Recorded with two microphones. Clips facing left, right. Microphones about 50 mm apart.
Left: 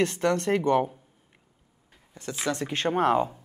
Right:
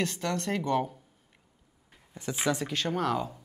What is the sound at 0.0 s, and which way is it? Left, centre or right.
Speech, left.